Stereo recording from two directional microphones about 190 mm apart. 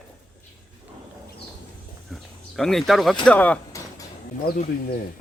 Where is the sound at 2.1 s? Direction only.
Centre (ahead or behind).